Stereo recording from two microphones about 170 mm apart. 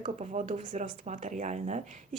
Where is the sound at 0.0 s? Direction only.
45° right (ahead or behind).